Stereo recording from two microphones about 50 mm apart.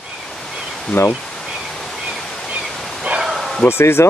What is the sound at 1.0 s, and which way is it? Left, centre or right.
Speech, left.